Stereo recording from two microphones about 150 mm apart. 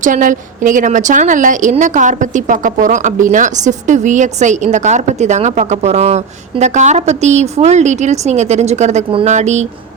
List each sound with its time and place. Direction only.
0.0 s a woman's voice: 60° right (ahead or behind)